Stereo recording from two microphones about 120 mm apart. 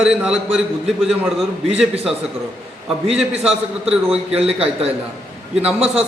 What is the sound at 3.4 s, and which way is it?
A man's voice, 5° right (ahead or behind).